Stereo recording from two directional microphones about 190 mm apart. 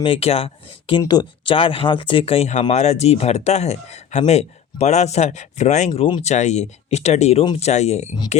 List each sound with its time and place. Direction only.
0.0 s speech: 30° left (ahead or behind)
5.9 s speech: 25° left (ahead or behind)
6.3 s speech: 40° left (ahead or behind)